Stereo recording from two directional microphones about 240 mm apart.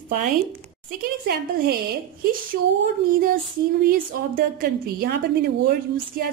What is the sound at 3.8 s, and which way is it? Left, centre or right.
Speech, right.